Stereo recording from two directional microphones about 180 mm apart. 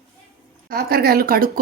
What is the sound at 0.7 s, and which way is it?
Speech, 55° right (ahead or behind).